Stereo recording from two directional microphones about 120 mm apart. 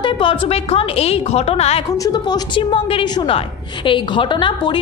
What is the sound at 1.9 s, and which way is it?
A woman's voice, 35° left (ahead or behind).